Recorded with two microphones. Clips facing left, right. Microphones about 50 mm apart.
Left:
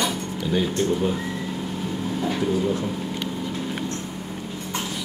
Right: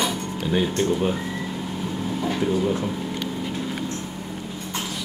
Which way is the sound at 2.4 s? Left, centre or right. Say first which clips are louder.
Right 1 dB; centre.